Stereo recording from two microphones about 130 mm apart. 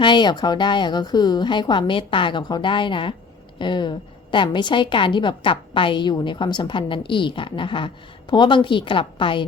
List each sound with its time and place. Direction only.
0.0 s a woman's voice: 35° left (ahead or behind)